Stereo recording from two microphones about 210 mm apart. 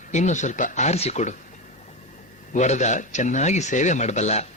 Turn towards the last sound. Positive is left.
turn(degrees=35)  # may be behind; listen again after turning